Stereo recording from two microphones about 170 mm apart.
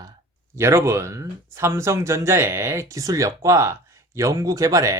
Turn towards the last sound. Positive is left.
turn(degrees=-20)  # may be behind; listen again after turning